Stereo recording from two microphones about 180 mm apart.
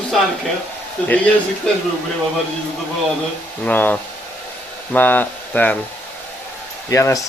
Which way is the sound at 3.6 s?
10° left (ahead or behind).